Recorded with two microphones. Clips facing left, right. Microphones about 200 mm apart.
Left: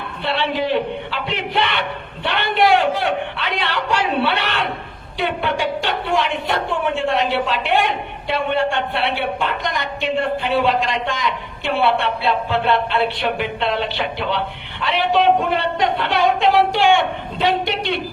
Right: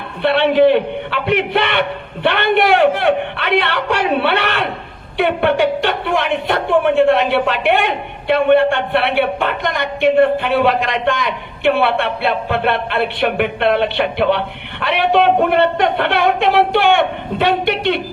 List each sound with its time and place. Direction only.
0.2 s a woman's voice: 60° right (ahead or behind)